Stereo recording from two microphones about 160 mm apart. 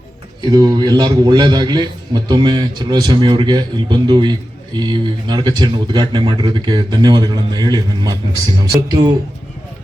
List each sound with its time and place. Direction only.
0.4 s a man's voice: 25° right (ahead or behind)